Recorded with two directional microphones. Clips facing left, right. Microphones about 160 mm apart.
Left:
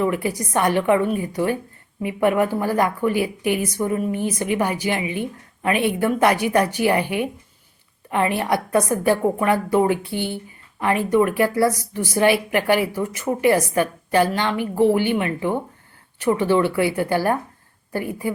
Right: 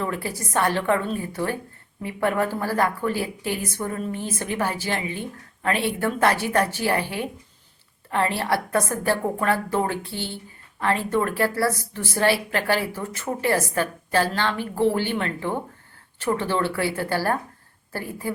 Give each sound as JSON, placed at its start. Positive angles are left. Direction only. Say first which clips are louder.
{"t": 0.0, "sound": "a woman's voice", "louder": "left 6 dB", "side_deg": 15}